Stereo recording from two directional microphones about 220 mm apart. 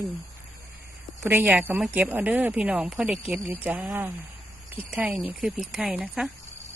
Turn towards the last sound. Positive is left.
turn(degrees=-5)  # may be behind; listen again after turning